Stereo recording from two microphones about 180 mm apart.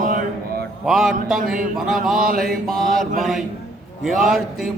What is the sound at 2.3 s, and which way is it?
Music, 55° right (ahead or behind).